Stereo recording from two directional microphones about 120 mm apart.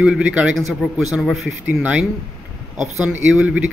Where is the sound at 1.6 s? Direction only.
15° right (ahead or behind).